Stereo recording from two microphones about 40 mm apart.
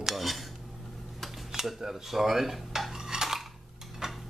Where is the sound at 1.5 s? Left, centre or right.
Centre.